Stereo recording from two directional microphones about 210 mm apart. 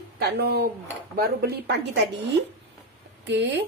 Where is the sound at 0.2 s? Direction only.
45° right (ahead or behind).